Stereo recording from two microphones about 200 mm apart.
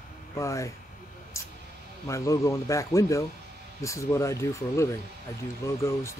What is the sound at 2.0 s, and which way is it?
Speech, 15° left (ahead or behind).